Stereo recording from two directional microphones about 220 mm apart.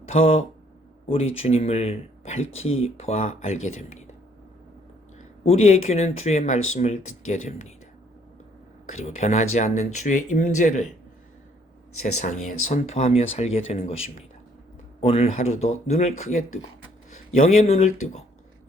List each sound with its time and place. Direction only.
0.1 s speech: 25° left (ahead or behind)
5.4 s speech: 30° left (ahead or behind)
9.0 s speech: 30° left (ahead or behind)
12.7 s speech: 30° left (ahead or behind)